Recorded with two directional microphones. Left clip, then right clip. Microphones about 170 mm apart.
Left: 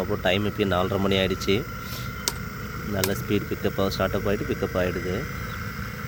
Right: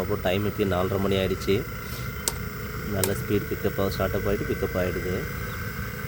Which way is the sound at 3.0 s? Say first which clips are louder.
Even; 5° right (ahead or behind).